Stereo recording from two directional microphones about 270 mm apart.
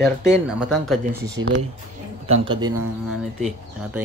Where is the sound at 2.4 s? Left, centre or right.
Centre.